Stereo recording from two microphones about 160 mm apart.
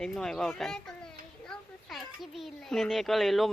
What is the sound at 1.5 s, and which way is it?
Children playing, centre (ahead or behind).